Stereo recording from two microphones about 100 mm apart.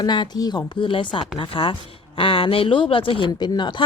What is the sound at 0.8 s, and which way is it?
Speech, 55° left (ahead or behind).